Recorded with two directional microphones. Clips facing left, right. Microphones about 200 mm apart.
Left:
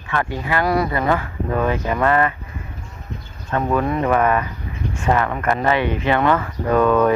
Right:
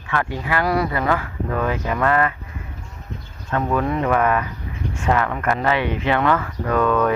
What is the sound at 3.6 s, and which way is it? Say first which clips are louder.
Speech: left 1 dB; 10° left (ahead or behind).